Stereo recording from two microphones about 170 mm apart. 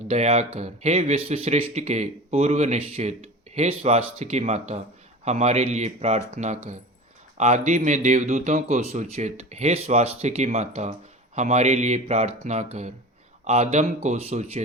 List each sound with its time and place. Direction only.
0.1 s speech: 40° right (ahead or behind)